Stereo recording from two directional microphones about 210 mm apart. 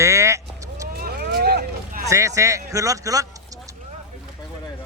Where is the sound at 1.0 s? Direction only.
45° right (ahead or behind).